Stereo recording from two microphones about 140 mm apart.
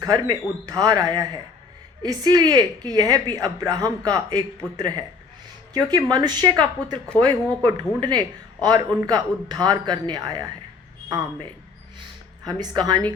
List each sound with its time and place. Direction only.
0.0 s a man's voice: 25° right (ahead or behind)
12.5 s a man's voice: 30° right (ahead or behind)